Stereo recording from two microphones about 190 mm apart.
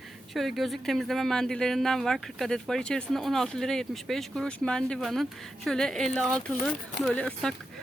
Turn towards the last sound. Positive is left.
turn(degrees=5)  # may be behind; listen again after turning